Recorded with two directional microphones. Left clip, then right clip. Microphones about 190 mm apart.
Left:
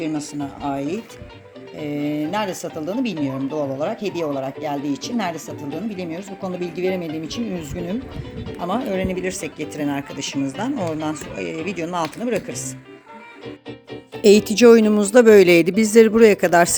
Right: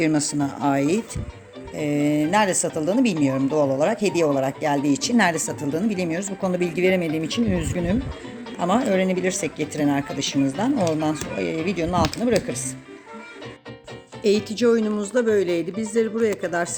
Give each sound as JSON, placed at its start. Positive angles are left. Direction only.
{"t": 0.6, "sound": "speech", "side_deg": -25}
{"t": 1.7, "sound": "speech", "side_deg": -10}
{"t": 14.2, "sound": "speech", "side_deg": 40}